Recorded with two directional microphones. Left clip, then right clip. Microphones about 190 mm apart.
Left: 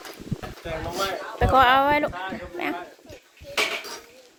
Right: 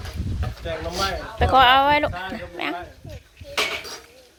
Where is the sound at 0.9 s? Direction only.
5° left (ahead or behind).